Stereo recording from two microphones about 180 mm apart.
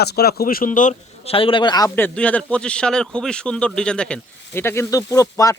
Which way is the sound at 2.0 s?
10° left (ahead or behind).